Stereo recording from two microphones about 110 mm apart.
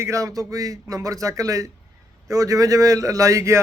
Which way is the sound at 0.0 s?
30° right (ahead or behind).